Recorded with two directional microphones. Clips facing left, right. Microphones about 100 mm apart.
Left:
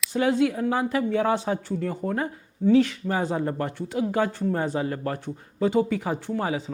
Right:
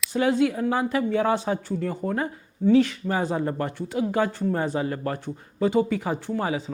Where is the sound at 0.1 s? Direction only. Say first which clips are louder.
Even; 15° right (ahead or behind).